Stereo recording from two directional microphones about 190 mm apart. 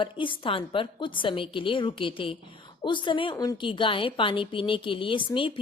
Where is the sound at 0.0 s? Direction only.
25° left (ahead or behind).